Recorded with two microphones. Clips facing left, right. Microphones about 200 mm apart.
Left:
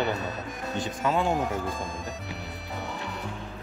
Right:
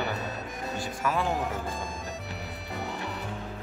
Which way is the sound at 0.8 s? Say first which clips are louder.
Left 3 dB; 20° left (ahead or behind).